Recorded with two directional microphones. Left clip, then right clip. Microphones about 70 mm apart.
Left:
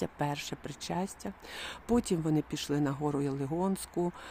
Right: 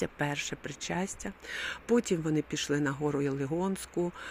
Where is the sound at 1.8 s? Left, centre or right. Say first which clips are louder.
Right 2 dB; left.